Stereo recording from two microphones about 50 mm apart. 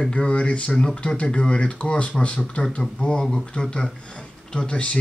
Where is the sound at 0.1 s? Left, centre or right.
Left.